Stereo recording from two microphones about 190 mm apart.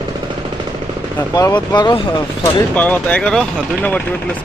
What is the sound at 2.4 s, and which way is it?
Speech, 10° left (ahead or behind).